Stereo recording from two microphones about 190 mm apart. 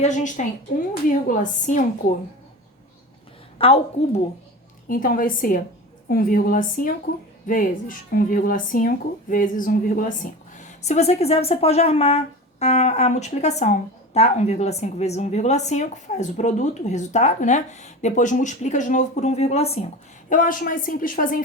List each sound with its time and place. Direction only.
0.0 s a woman's voice: 40° left (ahead or behind)
3.6 s a woman's voice: 30° left (ahead or behind)
4.9 s a woman's voice: 45° left (ahead or behind)
20.3 s a woman's voice: 45° left (ahead or behind)